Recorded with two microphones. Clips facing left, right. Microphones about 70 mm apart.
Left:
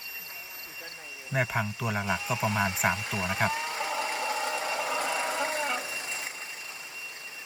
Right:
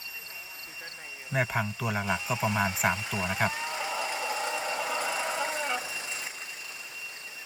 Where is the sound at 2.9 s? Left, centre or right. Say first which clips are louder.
Even; left.